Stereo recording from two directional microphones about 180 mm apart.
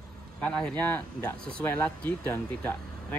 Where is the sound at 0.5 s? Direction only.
5° left (ahead or behind).